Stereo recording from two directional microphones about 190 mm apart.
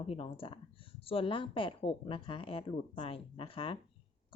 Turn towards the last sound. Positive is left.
turn(degrees=25)  # may be behind; listen again after turning